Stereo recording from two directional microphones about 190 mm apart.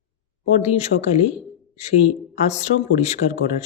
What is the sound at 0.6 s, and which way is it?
Speech, 35° left (ahead or behind).